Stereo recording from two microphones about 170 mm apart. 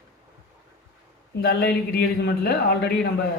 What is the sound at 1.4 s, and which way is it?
Speech, 75° left (ahead or behind).